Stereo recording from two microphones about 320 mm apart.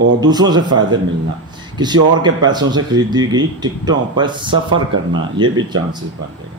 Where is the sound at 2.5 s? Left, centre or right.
Centre.